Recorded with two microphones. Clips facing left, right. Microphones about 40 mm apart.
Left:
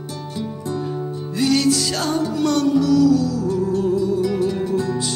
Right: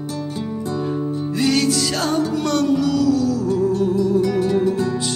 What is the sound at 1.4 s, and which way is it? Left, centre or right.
Music, right.